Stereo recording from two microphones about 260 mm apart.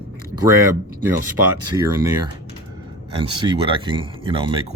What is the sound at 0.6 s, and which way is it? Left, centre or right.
Speech, centre.